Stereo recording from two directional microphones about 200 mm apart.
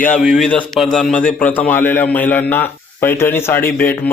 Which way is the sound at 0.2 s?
Centre (ahead or behind).